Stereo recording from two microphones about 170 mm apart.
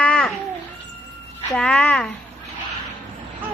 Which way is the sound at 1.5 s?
5° left (ahead or behind).